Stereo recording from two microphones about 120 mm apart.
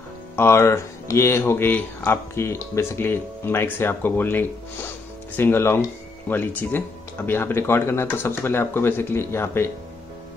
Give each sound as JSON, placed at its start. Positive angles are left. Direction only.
{"t": 0.4, "sound": "speech", "side_deg": 20}